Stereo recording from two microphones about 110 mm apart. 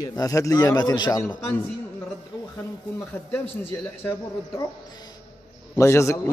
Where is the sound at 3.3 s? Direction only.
20° left (ahead or behind).